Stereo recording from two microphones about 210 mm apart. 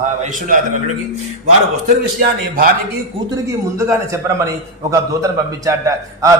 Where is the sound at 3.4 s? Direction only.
15° right (ahead or behind).